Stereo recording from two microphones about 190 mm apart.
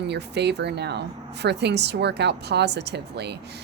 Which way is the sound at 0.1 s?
60° right (ahead or behind).